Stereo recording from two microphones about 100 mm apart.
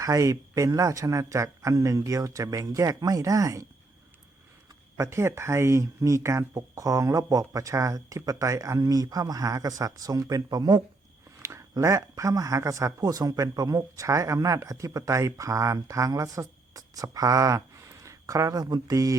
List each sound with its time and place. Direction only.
0.0 s speech: 35° right (ahead or behind)
4.9 s speech: 25° right (ahead or behind)
11.4 s speech: 30° right (ahead or behind)